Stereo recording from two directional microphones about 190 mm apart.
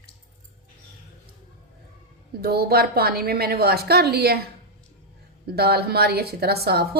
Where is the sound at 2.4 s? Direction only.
55° right (ahead or behind).